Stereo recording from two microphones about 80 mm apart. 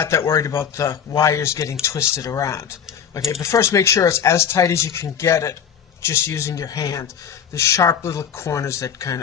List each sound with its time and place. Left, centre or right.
0.0 s speech: left